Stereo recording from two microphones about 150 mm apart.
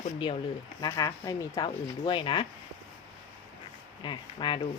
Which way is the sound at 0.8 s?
25° left (ahead or behind).